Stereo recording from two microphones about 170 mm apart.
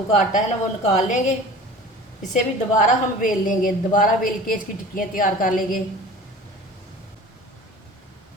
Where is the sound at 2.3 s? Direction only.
50° left (ahead or behind).